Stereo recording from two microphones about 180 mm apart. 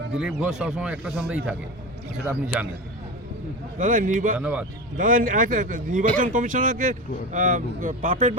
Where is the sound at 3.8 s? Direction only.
45° right (ahead or behind).